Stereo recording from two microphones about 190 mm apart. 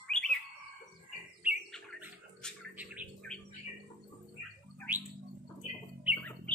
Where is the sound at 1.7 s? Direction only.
Centre (ahead or behind).